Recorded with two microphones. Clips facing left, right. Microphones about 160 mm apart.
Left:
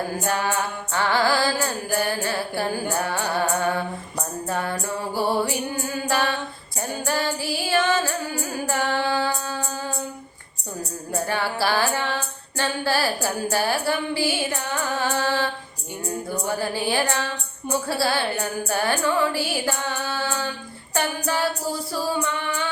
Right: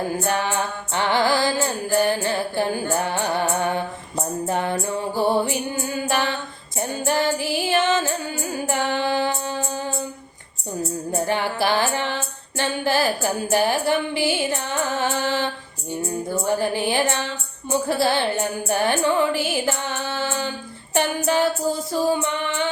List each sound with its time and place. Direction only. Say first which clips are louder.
0.3 s music: left 1 dB; 20° right (ahead or behind)
11.1 s music: right 1 dB; 20° right (ahead or behind)
16.5 s music: right 3 dB; 20° right (ahead or behind)